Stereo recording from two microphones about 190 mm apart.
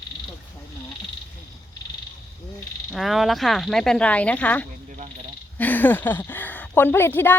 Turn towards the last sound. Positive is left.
turn(degrees=10)  # may be behind; listen again after turning